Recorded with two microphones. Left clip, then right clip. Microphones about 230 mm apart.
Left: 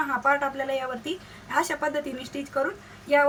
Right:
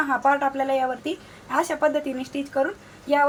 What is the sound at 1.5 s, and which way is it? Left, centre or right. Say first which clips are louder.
Speech: right 4 dB; centre.